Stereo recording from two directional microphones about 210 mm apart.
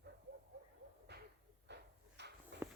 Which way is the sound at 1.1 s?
50° right (ahead or behind).